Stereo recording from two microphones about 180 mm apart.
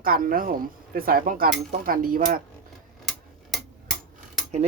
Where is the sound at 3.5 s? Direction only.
Centre (ahead or behind).